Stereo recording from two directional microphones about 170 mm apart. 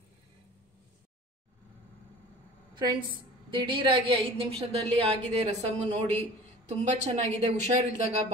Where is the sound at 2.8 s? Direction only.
25° right (ahead or behind).